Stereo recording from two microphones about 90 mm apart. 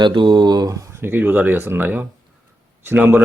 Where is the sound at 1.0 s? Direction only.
20° right (ahead or behind).